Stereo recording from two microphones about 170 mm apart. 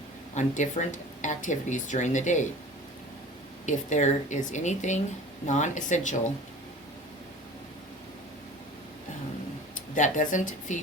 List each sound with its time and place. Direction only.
0.3 s speech: 45° left (ahead or behind)
3.7 s speech: 45° left (ahead or behind)
9.9 s speech: 50° left (ahead or behind)